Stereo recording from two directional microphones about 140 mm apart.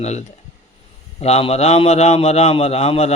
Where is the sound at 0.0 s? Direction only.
55° left (ahead or behind).